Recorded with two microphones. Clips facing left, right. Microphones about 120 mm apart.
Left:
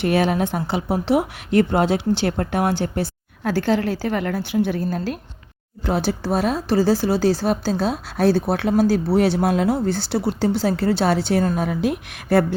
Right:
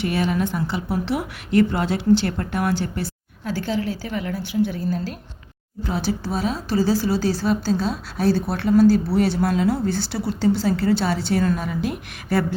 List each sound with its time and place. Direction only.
0.0 s speech: 55° left (ahead or behind)